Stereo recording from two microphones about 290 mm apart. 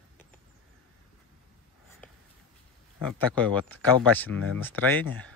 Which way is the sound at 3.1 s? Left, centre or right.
Centre.